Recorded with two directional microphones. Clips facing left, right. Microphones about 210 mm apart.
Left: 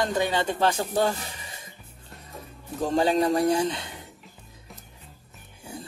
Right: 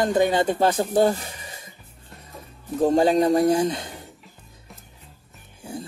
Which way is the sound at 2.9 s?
35° right (ahead or behind).